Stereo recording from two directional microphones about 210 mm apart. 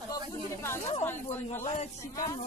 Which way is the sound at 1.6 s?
30° left (ahead or behind).